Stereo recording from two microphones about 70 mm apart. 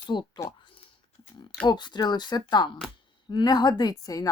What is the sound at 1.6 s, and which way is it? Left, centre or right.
A woman's voice, left.